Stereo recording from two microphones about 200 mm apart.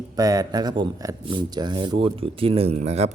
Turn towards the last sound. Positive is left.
turn(degrees=-30)  # may be behind; listen again after turning